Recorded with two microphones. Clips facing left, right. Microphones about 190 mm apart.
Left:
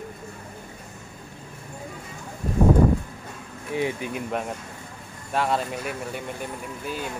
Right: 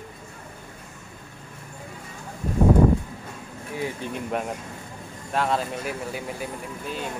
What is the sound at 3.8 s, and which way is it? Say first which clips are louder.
Speech: left 4 dB; 20° left (ahead or behind).